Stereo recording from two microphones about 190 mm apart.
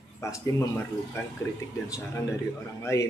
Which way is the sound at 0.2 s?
15° left (ahead or behind).